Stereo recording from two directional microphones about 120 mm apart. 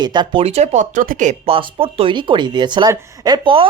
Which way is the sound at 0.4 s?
65° right (ahead or behind).